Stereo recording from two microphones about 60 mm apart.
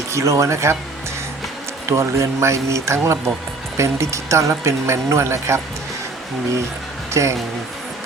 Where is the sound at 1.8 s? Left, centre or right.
Right.